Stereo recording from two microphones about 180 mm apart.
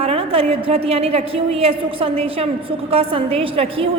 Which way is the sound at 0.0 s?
35° right (ahead or behind).